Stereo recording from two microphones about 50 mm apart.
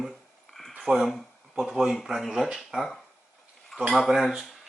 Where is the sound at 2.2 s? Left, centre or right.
Centre.